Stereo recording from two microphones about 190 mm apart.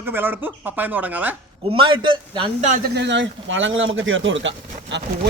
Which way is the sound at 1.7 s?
25° right (ahead or behind).